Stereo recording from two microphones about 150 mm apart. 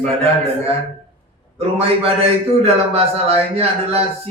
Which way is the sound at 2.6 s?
40° right (ahead or behind).